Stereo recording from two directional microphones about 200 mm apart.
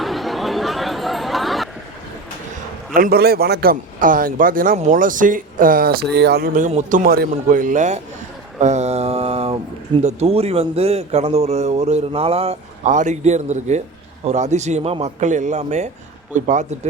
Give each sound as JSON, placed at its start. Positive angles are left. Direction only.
{"t": 0.0, "sound": "chatter", "side_deg": 0}
{"t": 2.9, "sound": "a man's voice", "side_deg": -45}
{"t": 6.5, "sound": "a man's voice", "side_deg": -35}
{"t": 8.6, "sound": "mantra", "side_deg": -35}
{"t": 10.0, "sound": "a man's voice", "side_deg": -35}